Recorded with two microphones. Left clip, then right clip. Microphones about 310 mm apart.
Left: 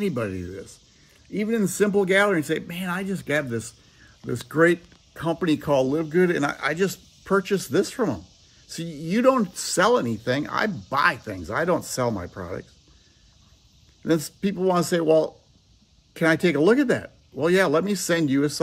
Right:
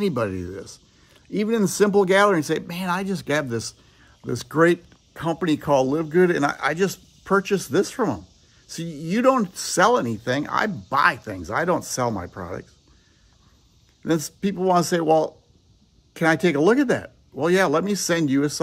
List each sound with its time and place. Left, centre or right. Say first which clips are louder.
0.0 s speech: right 3 dB; centre
14.0 s speech: even; centre